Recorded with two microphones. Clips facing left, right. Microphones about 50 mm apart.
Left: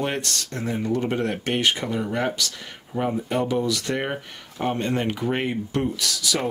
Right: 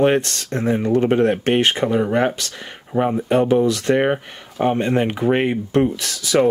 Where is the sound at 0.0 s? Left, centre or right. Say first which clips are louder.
Right 10 dB; right.